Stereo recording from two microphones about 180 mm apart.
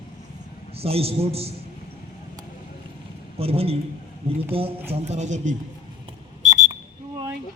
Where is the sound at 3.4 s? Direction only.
35° right (ahead or behind).